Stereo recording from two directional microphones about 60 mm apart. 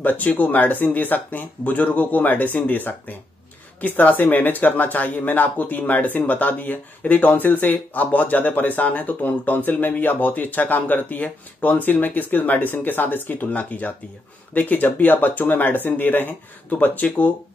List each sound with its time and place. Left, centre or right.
0.0 s speech: left